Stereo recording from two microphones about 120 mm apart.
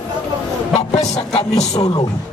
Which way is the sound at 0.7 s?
65° left (ahead or behind).